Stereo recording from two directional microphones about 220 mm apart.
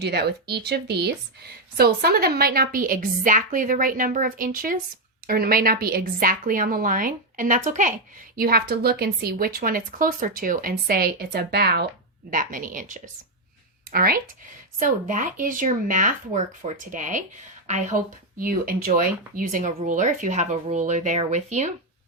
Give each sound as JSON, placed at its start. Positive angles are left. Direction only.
{"t": 0.0, "sound": "speech", "side_deg": -45}
{"t": 12.3, "sound": "speech", "side_deg": -35}